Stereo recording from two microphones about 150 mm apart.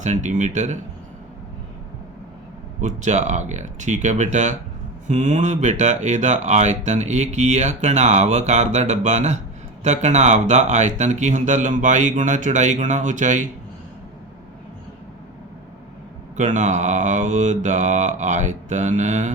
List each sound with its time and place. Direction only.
0.0 s speech: 50° right (ahead or behind)
2.8 s speech: 50° right (ahead or behind)
16.4 s speech: 55° right (ahead or behind)